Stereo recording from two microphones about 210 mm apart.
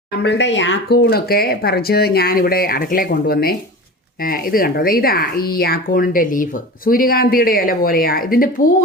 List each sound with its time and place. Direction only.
0.1 s speech: 55° left (ahead or behind)